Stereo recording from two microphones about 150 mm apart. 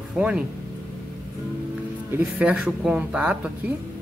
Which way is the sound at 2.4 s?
10° right (ahead or behind).